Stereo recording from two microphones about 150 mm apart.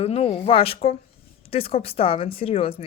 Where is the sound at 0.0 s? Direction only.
45° left (ahead or behind).